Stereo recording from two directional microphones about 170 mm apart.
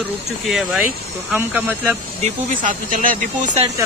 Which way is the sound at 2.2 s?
50° right (ahead or behind).